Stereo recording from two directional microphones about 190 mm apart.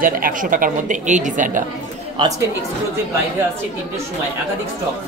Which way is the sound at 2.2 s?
25° right (ahead or behind).